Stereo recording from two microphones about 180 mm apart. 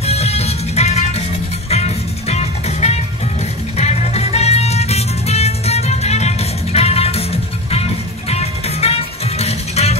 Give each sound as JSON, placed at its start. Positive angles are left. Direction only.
{"t": 0.0, "sound": "music", "side_deg": 35}
{"t": 8.3, "sound": "music", "side_deg": 35}